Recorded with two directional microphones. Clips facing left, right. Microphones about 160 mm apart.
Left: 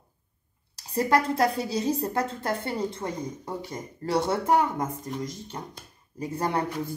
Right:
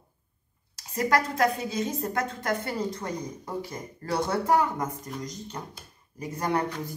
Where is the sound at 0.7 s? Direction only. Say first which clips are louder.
Left 2 dB; 30° left (ahead or behind).